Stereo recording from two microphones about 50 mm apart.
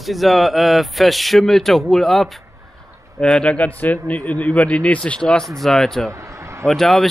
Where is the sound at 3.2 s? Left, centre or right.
Left.